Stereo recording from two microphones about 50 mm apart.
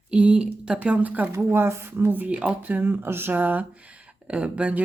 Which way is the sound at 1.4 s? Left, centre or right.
Right.